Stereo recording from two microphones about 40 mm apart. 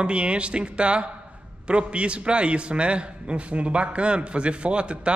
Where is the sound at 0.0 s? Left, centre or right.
Right.